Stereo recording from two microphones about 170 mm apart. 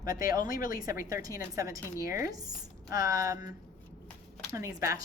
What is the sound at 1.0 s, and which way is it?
Speech, 20° right (ahead or behind).